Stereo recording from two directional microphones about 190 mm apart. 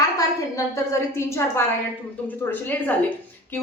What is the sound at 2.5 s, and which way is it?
Speech, 10° left (ahead or behind).